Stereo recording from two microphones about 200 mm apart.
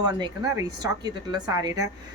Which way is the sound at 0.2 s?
20° right (ahead or behind).